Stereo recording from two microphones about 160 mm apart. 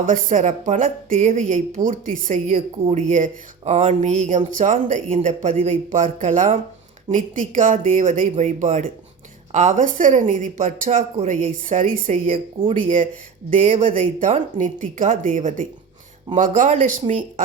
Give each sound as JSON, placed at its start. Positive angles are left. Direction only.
{"t": 0.0, "sound": "speech", "side_deg": -55}